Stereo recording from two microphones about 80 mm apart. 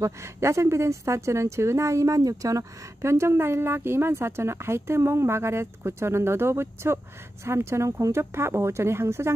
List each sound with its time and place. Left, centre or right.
0.0 s speech: right